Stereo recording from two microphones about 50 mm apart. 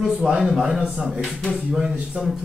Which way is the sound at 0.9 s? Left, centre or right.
Centre.